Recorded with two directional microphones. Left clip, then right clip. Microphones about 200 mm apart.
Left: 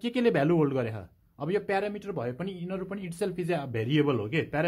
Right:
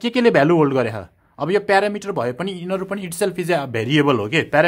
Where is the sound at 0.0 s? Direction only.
15° right (ahead or behind).